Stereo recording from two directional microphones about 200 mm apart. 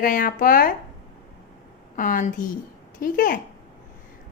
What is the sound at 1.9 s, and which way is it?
A woman's voice, 40° left (ahead or behind).